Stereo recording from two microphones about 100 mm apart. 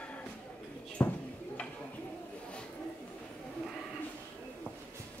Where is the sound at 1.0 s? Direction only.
20° left (ahead or behind).